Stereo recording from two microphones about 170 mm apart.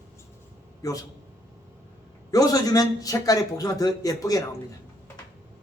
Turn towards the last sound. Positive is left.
turn(degrees=20)  # may be behind; listen again after turning